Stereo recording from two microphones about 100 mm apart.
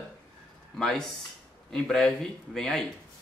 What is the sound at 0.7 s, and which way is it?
Speech, 5° left (ahead or behind).